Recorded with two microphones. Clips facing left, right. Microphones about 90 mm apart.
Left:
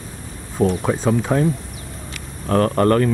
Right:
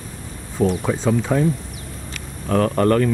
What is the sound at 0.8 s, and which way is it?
Speech, 15° left (ahead or behind).